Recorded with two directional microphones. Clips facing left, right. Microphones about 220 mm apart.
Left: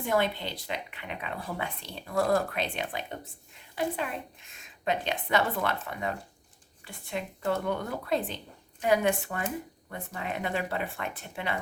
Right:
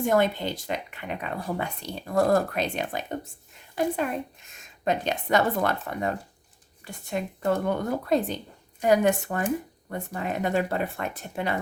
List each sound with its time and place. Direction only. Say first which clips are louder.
0.0 s speech: right 5 dB; 45° right (ahead or behind)